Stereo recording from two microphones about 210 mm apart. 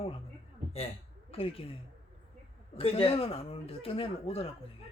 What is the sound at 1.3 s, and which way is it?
Speech, 25° left (ahead or behind).